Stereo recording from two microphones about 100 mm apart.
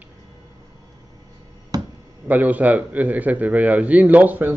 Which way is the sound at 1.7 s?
40° right (ahead or behind).